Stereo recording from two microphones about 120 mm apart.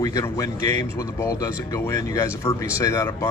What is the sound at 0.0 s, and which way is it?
A man's voice, 30° left (ahead or behind).